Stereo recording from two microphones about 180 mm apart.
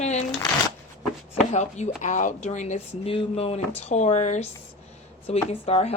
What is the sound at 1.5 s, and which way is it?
Speech, 40° left (ahead or behind).